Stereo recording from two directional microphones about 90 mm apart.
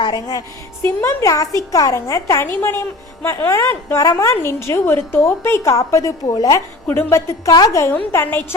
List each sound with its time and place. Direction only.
0.0 s a woman's voice: 50° left (ahead or behind)
2.5 s a woman's voice: 25° left (ahead or behind); by 6.6 s 45° left (ahead or behind)
6.8 s a woman's voice: 30° left (ahead or behind)
8.1 s a woman's voice: 25° left (ahead or behind)